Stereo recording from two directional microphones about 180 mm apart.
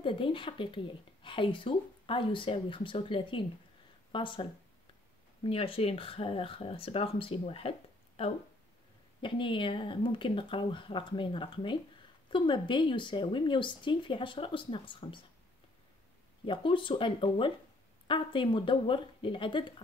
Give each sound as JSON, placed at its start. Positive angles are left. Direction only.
{"t": 0.0, "sound": "speech", "side_deg": 30}
{"t": 16.4, "sound": "speech", "side_deg": 30}